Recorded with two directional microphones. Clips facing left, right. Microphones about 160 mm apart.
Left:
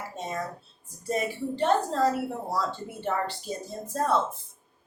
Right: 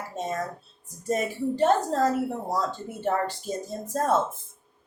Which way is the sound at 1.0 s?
45° right (ahead or behind).